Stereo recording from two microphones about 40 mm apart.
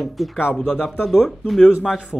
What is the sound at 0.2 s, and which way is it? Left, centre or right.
Speech, centre.